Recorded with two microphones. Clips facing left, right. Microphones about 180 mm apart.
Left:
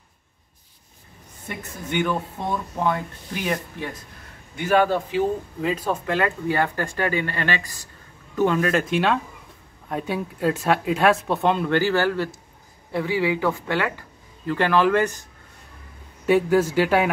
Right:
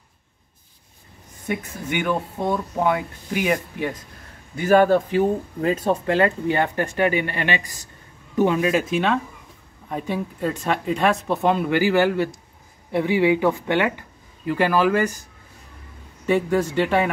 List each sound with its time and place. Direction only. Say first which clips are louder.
1.5 s speech: right 3 dB; 15° right (ahead or behind)
4.6 s speech: right 4 dB; 40° right (ahead or behind)
5.9 s speech: right 6 dB; 30° right (ahead or behind); by 8.8 s 10° right (ahead or behind)
8.9 s speech: even; centre (ahead or behind); by 13.9 s 20° right (ahead or behind)
14.4 s speech: right 1 dB; 10° right (ahead or behind)
16.3 s speech: left 2 dB; 5° left (ahead or behind)